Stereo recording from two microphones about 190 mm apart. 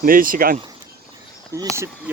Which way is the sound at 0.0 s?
45° right (ahead or behind).